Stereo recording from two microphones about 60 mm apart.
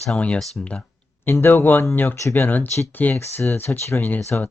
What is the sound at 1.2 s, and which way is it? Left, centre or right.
Speech, left.